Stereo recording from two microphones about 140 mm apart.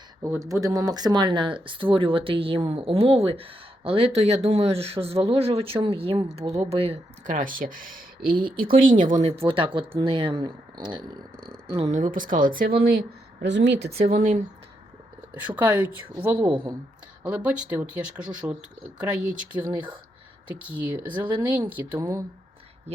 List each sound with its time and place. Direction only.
0.2 s speech: 20° right (ahead or behind)
6.7 s speech: 40° right (ahead or behind)
7.3 s speech: 70° right (ahead or behind)
9.2 s speech: 45° right (ahead or behind)
10.3 s speech: 25° right (ahead or behind)
11.9 s speech: 65° right (ahead or behind); by 14.2 s 90° right
14.2 s speech: 55° right (ahead or behind)
15.4 s speech: 10° right (ahead or behind)